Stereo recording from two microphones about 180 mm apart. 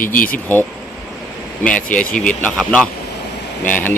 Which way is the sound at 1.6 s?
5° left (ahead or behind).